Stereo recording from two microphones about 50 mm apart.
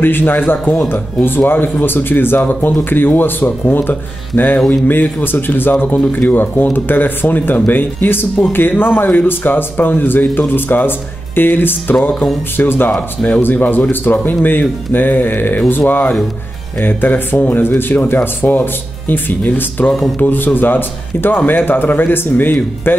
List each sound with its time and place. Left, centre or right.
0.0 s a man's voice: left
16.8 s speech: left